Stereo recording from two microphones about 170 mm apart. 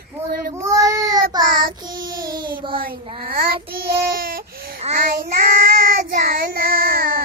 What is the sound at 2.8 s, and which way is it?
Child singing, 60° right (ahead or behind).